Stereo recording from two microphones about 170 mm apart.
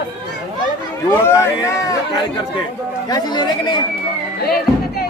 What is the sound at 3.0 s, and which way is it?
Speech, 25° left (ahead or behind).